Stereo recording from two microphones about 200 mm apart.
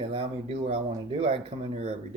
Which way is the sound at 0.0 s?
30° right (ahead or behind).